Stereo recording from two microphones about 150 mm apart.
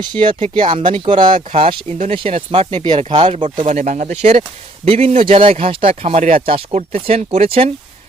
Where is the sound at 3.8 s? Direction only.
55° right (ahead or behind).